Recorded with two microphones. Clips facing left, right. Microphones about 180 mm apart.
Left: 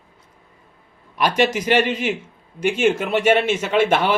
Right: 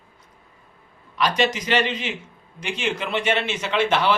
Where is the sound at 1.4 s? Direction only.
50° left (ahead or behind).